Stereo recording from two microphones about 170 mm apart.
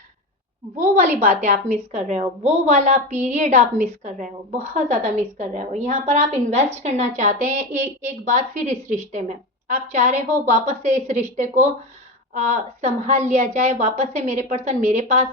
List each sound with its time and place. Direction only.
1.2 s a woman's voice: 40° right (ahead or behind)